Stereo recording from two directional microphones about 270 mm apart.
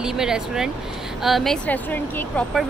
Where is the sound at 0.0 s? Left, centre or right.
Centre.